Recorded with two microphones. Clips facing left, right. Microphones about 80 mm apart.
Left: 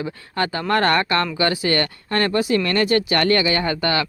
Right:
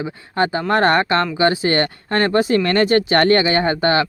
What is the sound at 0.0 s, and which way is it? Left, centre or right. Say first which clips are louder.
Speech: right 4 dB; right.